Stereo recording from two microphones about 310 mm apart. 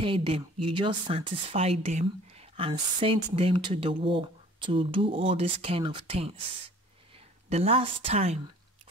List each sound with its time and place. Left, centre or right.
0.0 s speech: centre
7.4 s speech: centre